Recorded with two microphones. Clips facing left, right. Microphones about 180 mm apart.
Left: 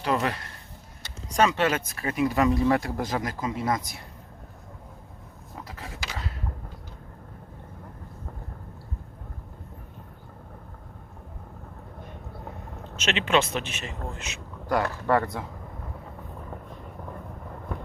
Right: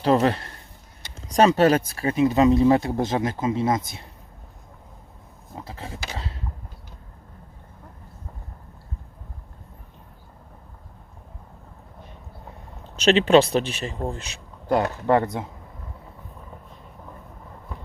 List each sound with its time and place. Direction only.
0.0 s a man's voice: 30° right (ahead or behind)
5.5 s a sound: 25° right (ahead or behind)
13.0 s a man's voice: 35° right (ahead or behind)
14.8 s speech: 20° right (ahead or behind)